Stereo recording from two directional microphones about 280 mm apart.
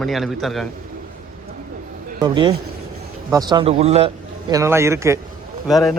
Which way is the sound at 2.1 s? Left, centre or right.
Centre.